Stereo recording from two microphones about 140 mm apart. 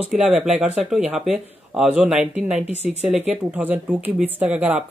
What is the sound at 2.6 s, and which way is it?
Speech, 50° left (ahead or behind).